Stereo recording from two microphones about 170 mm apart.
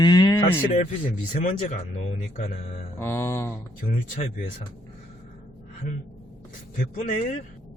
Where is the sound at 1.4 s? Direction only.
45° left (ahead or behind).